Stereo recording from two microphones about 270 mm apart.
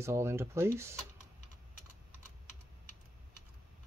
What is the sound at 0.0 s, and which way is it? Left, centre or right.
Speech, centre.